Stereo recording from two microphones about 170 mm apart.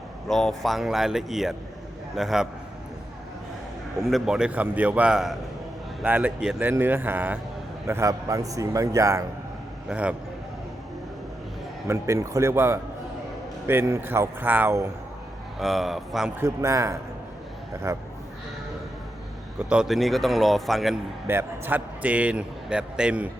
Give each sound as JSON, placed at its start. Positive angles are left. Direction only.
{"t": 0.3, "sound": "a man's voice", "side_deg": 0}
{"t": 4.1, "sound": "a man's voice", "side_deg": -5}
{"t": 9.9, "sound": "speech", "side_deg": -5}
{"t": 11.9, "sound": "speech", "side_deg": -15}
{"t": 15.5, "sound": "a man's voice", "side_deg": 0}
{"t": 16.4, "sound": "speech", "side_deg": -15}
{"t": 19.7, "sound": "a man's voice", "side_deg": 0}
{"t": 21.2, "sound": "a man's voice", "side_deg": -15}